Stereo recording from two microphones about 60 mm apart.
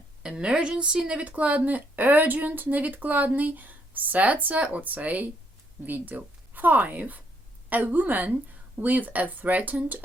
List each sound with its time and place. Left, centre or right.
0.2 s a woman's voice: centre